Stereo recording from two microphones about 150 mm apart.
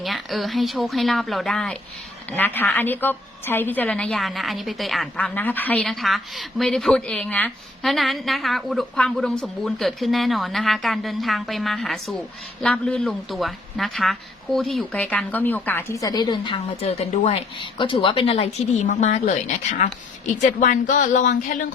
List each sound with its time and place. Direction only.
0.0 s a woman's voice: centre (ahead or behind)
2.3 s a woman's voice: 15° left (ahead or behind); by 18.9 s 40° left (ahead or behind)
18.9 s a woman's voice: 50° left (ahead or behind)